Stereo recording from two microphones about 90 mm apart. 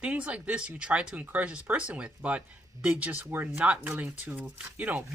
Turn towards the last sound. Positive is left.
turn(degrees=-15)  # may be behind; listen again after turning